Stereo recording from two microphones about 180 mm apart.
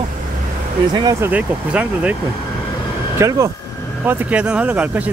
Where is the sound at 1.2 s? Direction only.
10° right (ahead or behind).